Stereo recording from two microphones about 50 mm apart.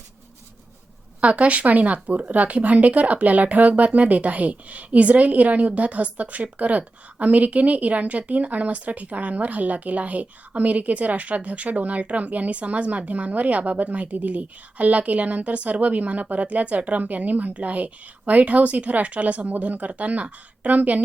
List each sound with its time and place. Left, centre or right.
1.2 s speech: right